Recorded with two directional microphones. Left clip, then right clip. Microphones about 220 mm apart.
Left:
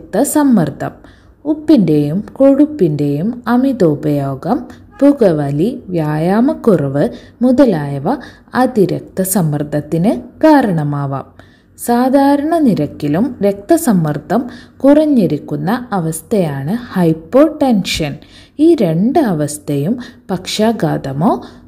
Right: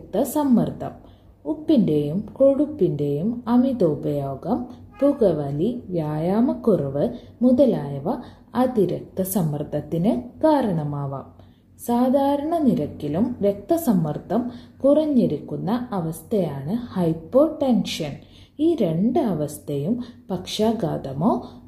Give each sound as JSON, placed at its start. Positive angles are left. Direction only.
{"t": 0.1, "sound": "a woman's voice", "side_deg": 35}